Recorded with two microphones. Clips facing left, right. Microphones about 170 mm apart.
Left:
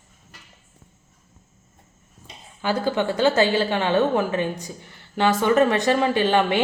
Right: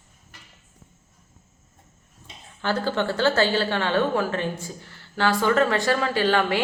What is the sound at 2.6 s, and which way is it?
A woman's voice, 15° left (ahead or behind).